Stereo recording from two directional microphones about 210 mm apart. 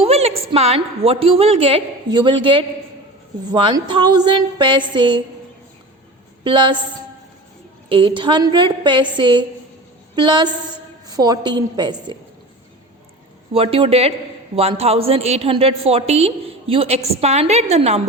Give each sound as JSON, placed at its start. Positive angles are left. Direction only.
{"t": 0.0, "sound": "a woman's voice", "side_deg": -30}
{"t": 6.4, "sound": "a woman's voice", "side_deg": -20}
{"t": 7.9, "sound": "a woman's voice", "side_deg": -25}
{"t": 13.5, "sound": "a woman's voice", "side_deg": -25}